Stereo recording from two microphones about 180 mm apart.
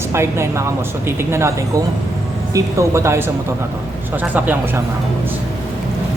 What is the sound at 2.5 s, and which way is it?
Speech, 15° right (ahead or behind).